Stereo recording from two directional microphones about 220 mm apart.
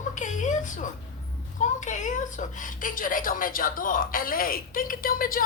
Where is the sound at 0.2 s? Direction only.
35° left (ahead or behind).